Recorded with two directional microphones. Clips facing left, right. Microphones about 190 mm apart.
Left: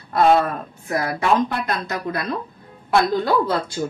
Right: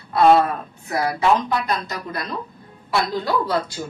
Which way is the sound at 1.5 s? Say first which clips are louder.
Right 1 dB; 55° left (ahead or behind).